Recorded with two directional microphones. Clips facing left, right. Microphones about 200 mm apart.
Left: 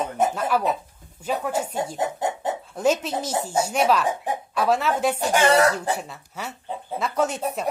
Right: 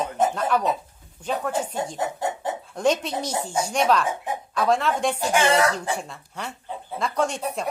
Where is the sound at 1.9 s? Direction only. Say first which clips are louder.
Left 1 dB; 20° left (ahead or behind).